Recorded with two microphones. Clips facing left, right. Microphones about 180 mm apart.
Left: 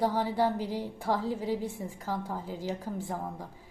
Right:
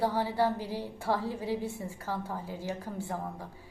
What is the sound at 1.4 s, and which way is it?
Speech, 15° right (ahead or behind).